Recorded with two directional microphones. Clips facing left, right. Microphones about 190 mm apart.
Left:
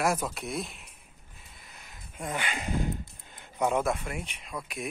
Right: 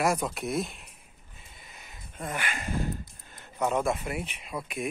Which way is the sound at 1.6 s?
Centre (ahead or behind).